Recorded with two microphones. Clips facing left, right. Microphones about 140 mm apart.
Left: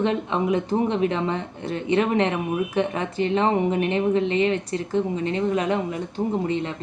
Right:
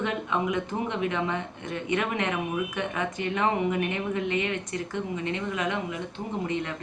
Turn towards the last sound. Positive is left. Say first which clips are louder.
# left 6 dB
turn(degrees=30)  # may be behind; listen again after turning